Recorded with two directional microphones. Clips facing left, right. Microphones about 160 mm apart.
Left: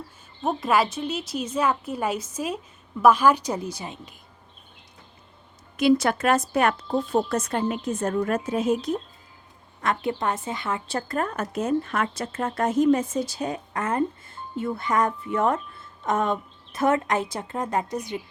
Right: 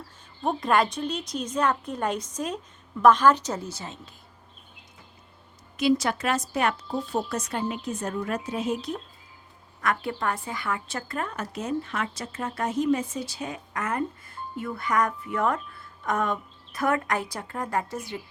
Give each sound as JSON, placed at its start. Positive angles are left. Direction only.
{"t": 0.4, "sound": "a woman's voice", "side_deg": 5}
{"t": 5.7, "sound": "speech", "side_deg": 55}
{"t": 9.8, "sound": "a woman's voice", "side_deg": 25}